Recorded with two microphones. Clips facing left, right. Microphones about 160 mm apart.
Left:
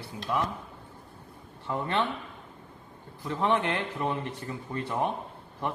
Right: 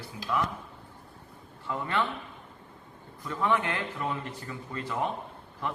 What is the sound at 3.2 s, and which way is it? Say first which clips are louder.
A man's voice: left 1 dB; 25° left (ahead or behind).